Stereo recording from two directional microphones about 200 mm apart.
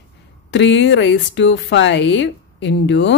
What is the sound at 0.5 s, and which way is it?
Speech, 60° left (ahead or behind).